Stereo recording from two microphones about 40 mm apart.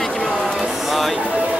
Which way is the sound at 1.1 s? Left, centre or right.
Right.